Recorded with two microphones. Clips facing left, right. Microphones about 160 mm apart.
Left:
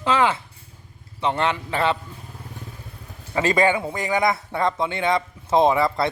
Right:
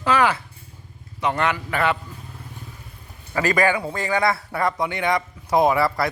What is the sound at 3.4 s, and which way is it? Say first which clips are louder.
A man's voice: left 1 dB; 25° left (ahead or behind).